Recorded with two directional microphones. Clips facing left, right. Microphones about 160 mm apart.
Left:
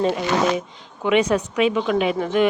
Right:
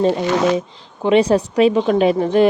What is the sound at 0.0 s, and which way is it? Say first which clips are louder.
A woman's voice: right 4 dB; 30° right (ahead or behind).